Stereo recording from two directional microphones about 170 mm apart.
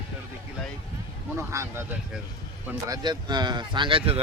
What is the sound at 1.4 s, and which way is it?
Speech, 15° right (ahead or behind).